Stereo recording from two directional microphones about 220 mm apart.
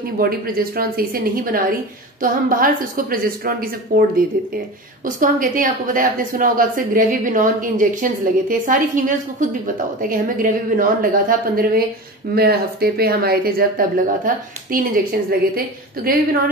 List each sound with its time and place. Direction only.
0.2 s a woman's voice: 40° right (ahead or behind)